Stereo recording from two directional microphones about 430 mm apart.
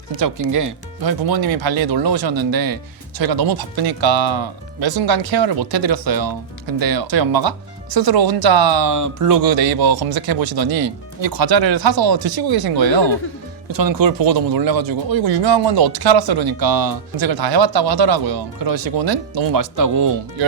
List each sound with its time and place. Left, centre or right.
0.2 s speech: right
15.2 s speech: right